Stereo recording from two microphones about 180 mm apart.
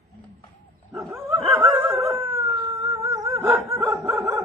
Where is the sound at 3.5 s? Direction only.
15° right (ahead or behind).